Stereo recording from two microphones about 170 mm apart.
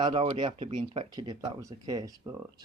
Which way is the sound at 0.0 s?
30° right (ahead or behind).